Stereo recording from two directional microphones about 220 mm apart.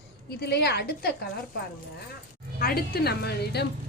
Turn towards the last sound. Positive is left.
turn(degrees=45)  # may be behind; listen again after turning